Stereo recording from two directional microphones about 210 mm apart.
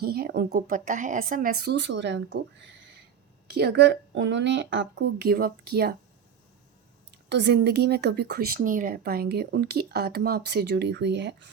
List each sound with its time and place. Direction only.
0.0 s speech: 50° right (ahead or behind)
7.1 s speech: 55° right (ahead or behind)